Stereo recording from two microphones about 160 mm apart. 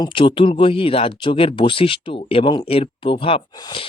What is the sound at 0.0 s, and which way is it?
Speech, 30° left (ahead or behind).